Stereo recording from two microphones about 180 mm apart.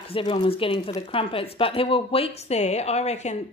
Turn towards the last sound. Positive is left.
turn(degrees=35)  # may be behind; listen again after turning